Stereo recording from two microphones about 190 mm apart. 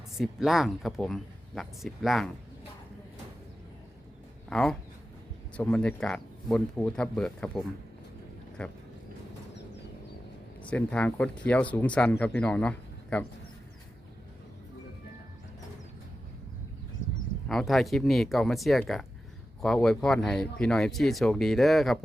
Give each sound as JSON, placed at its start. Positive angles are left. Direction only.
{"t": 0.2, "sound": "speech", "side_deg": 0}
{"t": 4.4, "sound": "speech", "side_deg": 5}
{"t": 10.6, "sound": "speech", "side_deg": 5}
{"t": 17.5, "sound": "speech", "side_deg": 0}